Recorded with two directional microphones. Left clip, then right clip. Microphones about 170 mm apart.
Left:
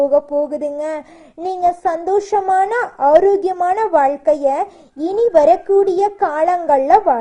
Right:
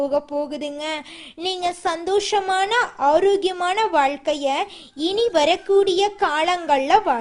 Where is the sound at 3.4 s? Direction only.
25° right (ahead or behind).